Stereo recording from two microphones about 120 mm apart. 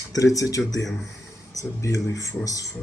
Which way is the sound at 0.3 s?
30° left (ahead or behind).